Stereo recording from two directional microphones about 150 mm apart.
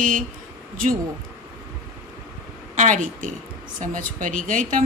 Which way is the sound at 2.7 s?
55° right (ahead or behind).